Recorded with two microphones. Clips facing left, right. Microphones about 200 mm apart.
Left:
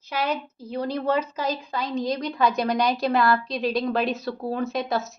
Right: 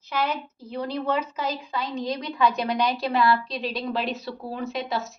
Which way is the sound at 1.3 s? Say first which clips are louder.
Left 2 dB; 40° left (ahead or behind).